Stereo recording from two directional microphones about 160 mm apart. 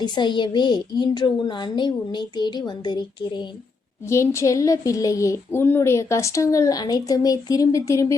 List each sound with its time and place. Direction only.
0.0 s speech: 30° left (ahead or behind)